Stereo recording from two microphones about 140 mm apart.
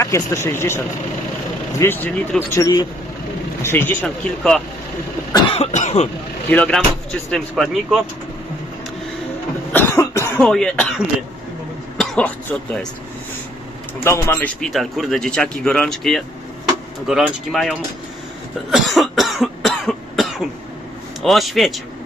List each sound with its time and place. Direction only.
0.0 s speech: 20° left (ahead or behind)
1.8 s speech: 15° left (ahead or behind)
5.5 s cough: 50° left (ahead or behind)
6.5 s speech: 10° left (ahead or behind)
9.7 s cough: 20° left (ahead or behind)
10.4 s speech: 5° left (ahead or behind)
14.0 s speech: 15° left (ahead or behind)
14.6 s speech: centre (ahead or behind)
18.7 s cough: centre (ahead or behind)
21.2 s speech: centre (ahead or behind)